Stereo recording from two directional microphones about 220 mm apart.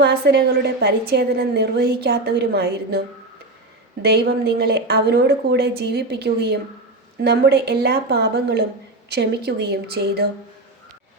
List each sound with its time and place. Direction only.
0.0 s a woman's voice: 50° right (ahead or behind)
4.0 s a woman's voice: 50° right (ahead or behind)